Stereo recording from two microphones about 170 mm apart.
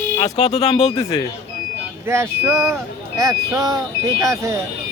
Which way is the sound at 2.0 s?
15° right (ahead or behind).